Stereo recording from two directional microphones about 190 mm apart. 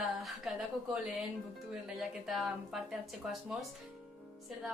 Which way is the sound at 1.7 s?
Centre (ahead or behind).